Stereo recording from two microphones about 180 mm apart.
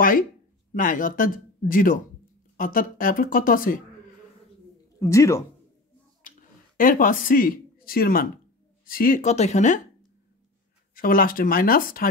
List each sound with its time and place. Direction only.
0.7 s speech: 50° left (ahead or behind)
5.1 s speech: 15° left (ahead or behind)
6.8 s speech: 50° left (ahead or behind)
11.0 s speech: 50° left (ahead or behind)